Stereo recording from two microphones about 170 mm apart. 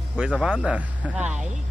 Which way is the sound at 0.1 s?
5° right (ahead or behind).